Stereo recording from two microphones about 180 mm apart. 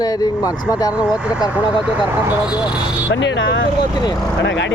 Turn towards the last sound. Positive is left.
turn(degrees=85)